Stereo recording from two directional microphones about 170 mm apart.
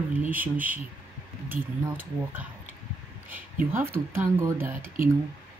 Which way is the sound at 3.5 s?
15° right (ahead or behind).